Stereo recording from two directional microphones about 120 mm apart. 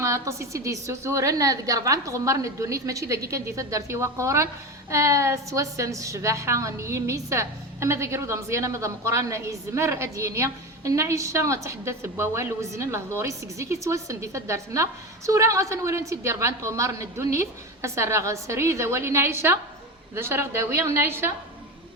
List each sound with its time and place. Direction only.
0.0 s a woman's voice: 25° right (ahead or behind)